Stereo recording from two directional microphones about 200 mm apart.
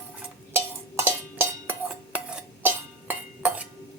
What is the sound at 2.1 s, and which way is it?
Dishes, 5° right (ahead or behind).